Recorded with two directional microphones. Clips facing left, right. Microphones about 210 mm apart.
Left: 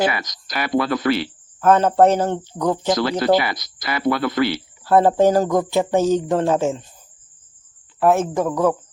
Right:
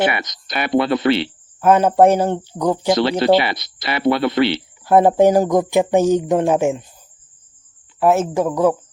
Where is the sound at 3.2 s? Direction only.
25° right (ahead or behind).